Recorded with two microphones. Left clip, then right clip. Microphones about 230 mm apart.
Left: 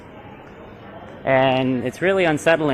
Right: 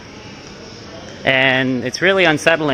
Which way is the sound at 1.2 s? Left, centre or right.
Right.